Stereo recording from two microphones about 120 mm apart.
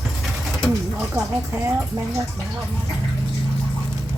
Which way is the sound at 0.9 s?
20° right (ahead or behind).